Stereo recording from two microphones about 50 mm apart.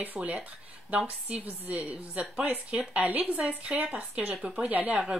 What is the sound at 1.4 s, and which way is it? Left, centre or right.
A woman's voice, right.